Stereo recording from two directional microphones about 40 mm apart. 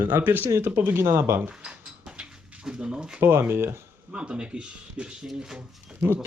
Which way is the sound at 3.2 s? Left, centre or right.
Right.